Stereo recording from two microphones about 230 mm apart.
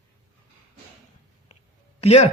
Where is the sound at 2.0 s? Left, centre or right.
Left.